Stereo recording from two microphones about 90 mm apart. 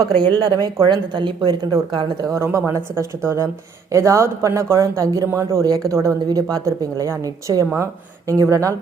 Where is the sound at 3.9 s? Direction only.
35° right (ahead or behind).